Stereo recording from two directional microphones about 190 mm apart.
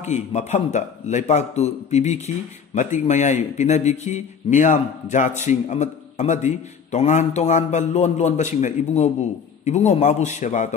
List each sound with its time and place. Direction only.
0.0 s a man's voice: 35° left (ahead or behind)